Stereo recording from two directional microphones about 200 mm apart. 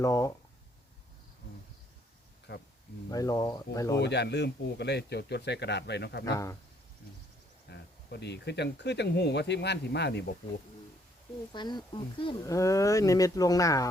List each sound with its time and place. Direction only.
0.0 s speech: 15° left (ahead or behind)
2.5 s speech: 55° left (ahead or behind)
3.1 s speech: 20° left (ahead or behind)
4.0 s speech: 55° left (ahead or behind)
6.2 s speech: 15° left (ahead or behind)
7.7 s speech: 55° left (ahead or behind)
11.5 s speech: 20° left (ahead or behind)